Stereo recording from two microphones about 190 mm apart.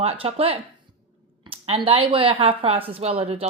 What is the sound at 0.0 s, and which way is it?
Speech, 30° right (ahead or behind).